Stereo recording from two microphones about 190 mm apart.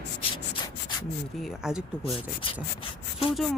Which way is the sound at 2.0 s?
30° left (ahead or behind).